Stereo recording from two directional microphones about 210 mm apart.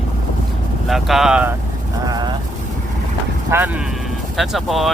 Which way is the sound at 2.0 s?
20° right (ahead or behind).